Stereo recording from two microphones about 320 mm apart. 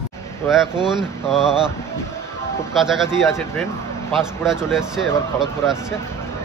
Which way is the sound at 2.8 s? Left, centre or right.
Centre.